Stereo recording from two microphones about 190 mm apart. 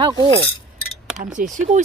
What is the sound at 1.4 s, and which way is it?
Speech, 45° right (ahead or behind).